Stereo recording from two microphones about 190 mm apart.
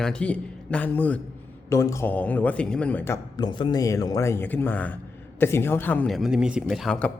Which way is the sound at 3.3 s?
25° left (ahead or behind).